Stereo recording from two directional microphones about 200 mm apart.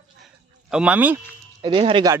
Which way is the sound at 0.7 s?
5° right (ahead or behind).